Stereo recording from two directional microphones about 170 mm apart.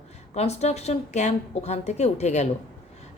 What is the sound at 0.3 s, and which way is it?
A woman's voice, 40° left (ahead or behind).